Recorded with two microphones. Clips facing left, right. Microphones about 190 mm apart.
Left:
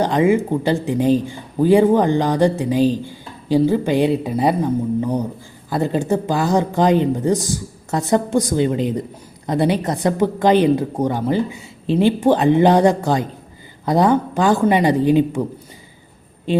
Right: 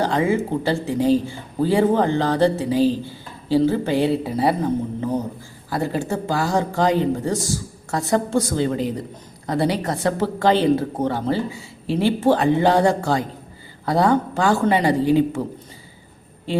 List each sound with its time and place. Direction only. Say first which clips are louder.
0.0 s a woman's voice: left 4 dB; 20° left (ahead or behind)
16.5 s music: left 4 dB; 20° left (ahead or behind)